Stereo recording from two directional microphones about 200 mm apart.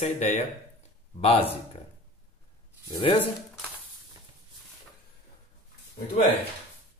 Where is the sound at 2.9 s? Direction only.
25° left (ahead or behind).